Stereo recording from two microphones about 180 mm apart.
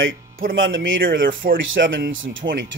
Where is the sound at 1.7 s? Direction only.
90° right.